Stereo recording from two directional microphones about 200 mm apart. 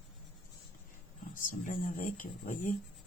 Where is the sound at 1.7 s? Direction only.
40° left (ahead or behind).